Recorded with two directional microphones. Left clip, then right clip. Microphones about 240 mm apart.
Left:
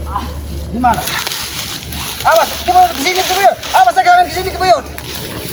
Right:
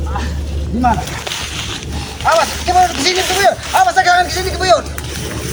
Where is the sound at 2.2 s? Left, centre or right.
Centre.